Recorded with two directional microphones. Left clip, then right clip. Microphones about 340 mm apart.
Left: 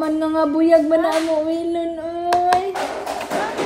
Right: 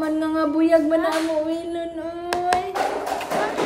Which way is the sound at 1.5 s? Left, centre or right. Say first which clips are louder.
Left 5 dB; centre.